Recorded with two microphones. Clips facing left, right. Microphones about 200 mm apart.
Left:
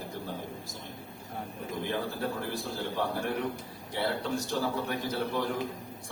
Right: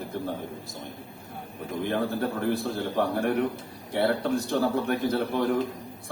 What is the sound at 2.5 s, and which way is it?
Speech, 60° right (ahead or behind).